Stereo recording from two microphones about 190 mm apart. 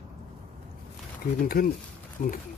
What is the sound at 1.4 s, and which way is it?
Speech, 50° left (ahead or behind).